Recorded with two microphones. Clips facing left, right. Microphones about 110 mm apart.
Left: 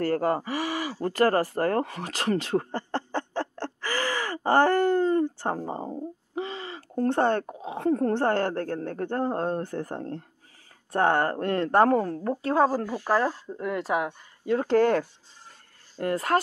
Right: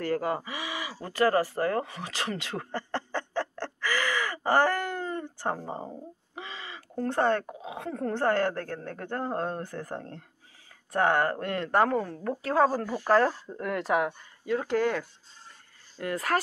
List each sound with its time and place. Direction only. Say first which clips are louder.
0.0 s speech: left 4 dB; 45° left (ahead or behind)
5.9 s a sound: left 7 dB; 20° left (ahead or behind)
6.4 s a sound: left 3 dB; 35° left (ahead or behind)
8.1 s a woman's voice: left 2 dB; 30° left (ahead or behind)
12.9 s speech: right 1 dB; 10° left (ahead or behind)
14.4 s a woman's voice: left 5 dB; 35° left (ahead or behind)
16.0 s a woman's voice: left 4 dB; 30° left (ahead or behind)